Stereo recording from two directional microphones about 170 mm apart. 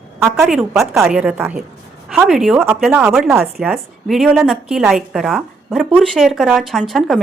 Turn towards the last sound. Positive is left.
turn(degrees=0)  # may be behind; listen again after turning